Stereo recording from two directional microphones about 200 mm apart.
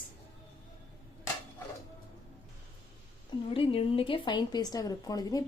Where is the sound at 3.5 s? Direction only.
25° left (ahead or behind).